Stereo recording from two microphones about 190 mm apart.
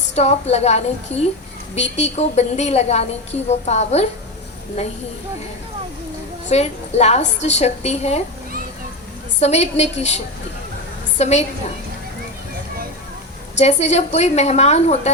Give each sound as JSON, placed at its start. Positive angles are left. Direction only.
{"t": 0.2, "sound": "a woman's voice", "side_deg": 35}
{"t": 2.0, "sound": "a woman's voice", "side_deg": 35}
{"t": 6.5, "sound": "a woman's voice", "side_deg": 35}
{"t": 9.4, "sound": "a woman's voice", "side_deg": 35}
{"t": 11.2, "sound": "a woman's voice", "side_deg": 35}
{"t": 13.6, "sound": "a woman's voice", "side_deg": 35}